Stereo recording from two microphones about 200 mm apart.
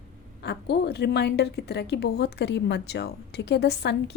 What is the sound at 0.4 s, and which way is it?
A woman's voice, 55° left (ahead or behind).